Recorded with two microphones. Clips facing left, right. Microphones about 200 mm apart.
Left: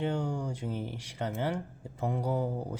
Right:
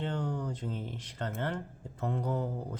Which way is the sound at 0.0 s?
10° left (ahead or behind).